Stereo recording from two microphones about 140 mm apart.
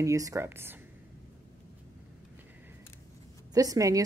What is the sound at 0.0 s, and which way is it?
Speech, 25° right (ahead or behind).